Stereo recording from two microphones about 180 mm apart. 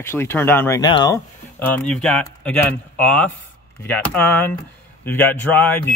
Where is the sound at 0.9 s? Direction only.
25° left (ahead or behind).